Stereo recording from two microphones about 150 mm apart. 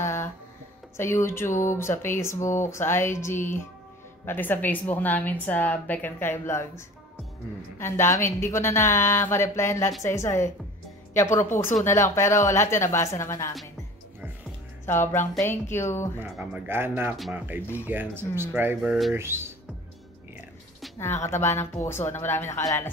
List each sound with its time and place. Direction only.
0.0 s a sound: 20° left (ahead or behind)
0.9 s a woman's voice: 15° left (ahead or behind)
7.8 s a woman's voice: 20° left (ahead or behind)
14.9 s a woman's voice: 15° left (ahead or behind)
16.3 s a man's voice: 10° right (ahead or behind)
18.8 s speech: centre (ahead or behind)
19.1 s a man's voice: 15° right (ahead or behind)
21.0 s a woman's voice: 15° left (ahead or behind)